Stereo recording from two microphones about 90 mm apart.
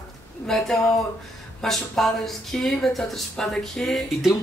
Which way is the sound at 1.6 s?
5° left (ahead or behind).